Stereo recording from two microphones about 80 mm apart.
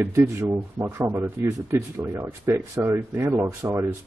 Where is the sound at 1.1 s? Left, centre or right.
Right.